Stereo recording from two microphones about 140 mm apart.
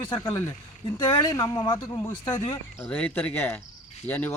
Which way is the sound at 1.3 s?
30° left (ahead or behind).